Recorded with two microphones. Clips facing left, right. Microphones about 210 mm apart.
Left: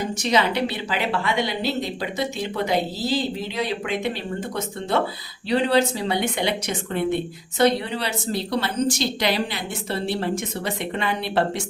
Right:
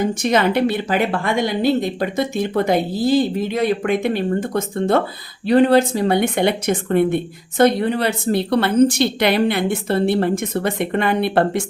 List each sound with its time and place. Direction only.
0.0 s a woman's voice: 50° right (ahead or behind)